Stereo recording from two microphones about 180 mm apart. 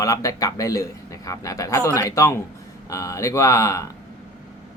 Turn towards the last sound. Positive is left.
turn(degrees=15)  # may be behind; listen again after turning